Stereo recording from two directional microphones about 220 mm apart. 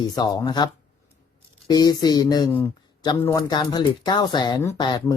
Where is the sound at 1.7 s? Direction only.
20° left (ahead or behind).